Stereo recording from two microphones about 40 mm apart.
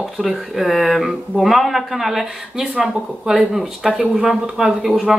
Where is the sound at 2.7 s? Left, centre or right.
Centre.